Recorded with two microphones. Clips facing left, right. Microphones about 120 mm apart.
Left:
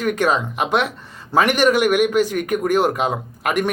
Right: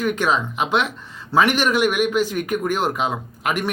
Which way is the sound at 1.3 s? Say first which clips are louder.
Even; 15° left (ahead or behind).